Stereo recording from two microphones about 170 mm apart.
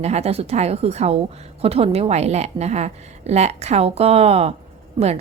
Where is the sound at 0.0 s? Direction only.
40° right (ahead or behind).